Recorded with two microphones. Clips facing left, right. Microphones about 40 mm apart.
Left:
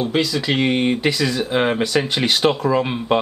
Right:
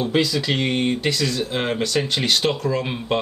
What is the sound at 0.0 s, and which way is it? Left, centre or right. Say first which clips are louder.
Speech: left 1 dB; centre.